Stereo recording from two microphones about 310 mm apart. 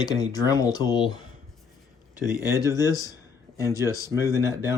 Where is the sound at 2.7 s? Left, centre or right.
Centre.